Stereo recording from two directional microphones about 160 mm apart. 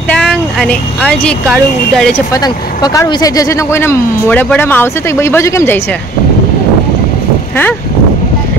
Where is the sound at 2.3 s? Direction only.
25° left (ahead or behind).